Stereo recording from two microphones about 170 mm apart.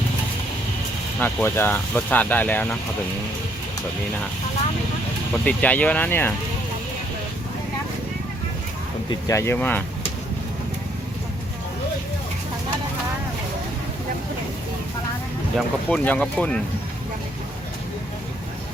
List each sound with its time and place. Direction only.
1.2 s speech: 10° left (ahead or behind)
5.5 s speech: 10° left (ahead or behind)
9.0 s speech: 20° left (ahead or behind)
15.5 s speech: 5° left (ahead or behind)